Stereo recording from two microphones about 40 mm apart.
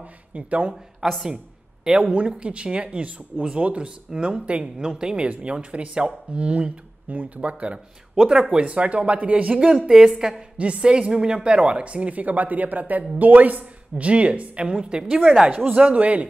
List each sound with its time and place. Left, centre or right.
0.3 s speech: right
1.0 s a woman's voice: centre
2.0 s speech: right
9.5 s speech: right
9.8 s a woman's voice: centre
10.6 s a woman's voice: right
15.7 s speech: right